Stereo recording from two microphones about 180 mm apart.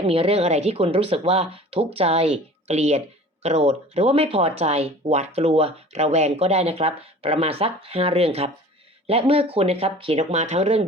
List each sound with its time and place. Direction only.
0.1 s speech: 35° right (ahead or behind)